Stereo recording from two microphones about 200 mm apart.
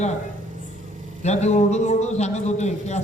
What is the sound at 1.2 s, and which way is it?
Speech, 35° left (ahead or behind).